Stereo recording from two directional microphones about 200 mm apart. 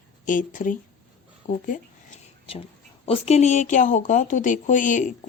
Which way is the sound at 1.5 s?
40° left (ahead or behind).